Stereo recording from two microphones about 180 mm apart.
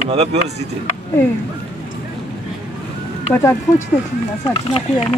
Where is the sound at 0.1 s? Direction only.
35° right (ahead or behind).